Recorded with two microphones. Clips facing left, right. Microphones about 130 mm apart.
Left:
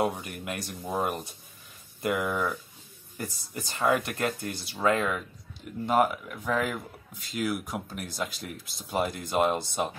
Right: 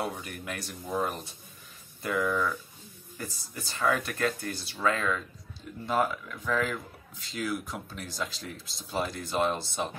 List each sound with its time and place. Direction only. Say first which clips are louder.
0.0 s speech: left 5 dB; 15° left (ahead or behind)